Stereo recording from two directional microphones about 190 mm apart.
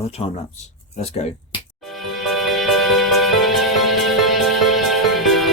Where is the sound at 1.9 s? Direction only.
Centre (ahead or behind).